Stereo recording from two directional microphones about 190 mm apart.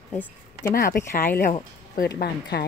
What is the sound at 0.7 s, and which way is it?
Speech, 50° left (ahead or behind).